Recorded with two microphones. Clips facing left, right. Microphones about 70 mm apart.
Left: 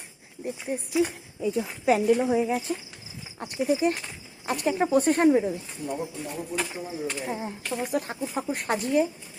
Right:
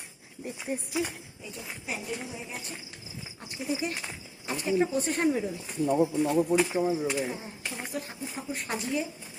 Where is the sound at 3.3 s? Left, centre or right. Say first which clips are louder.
Left 8 dB; left.